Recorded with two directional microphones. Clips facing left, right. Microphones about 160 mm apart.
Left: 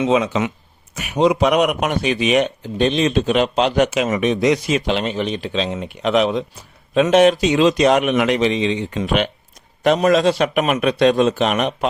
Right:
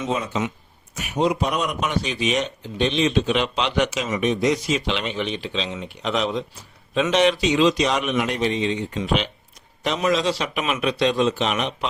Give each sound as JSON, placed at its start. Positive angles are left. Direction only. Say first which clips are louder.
{"t": 0.0, "sound": "speech", "louder": "left 7 dB", "side_deg": 85}
{"t": 4.9, "sound": "speech", "louder": "left 5 dB", "side_deg": 40}